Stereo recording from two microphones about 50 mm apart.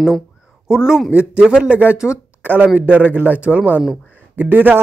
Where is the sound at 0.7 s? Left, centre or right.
Centre.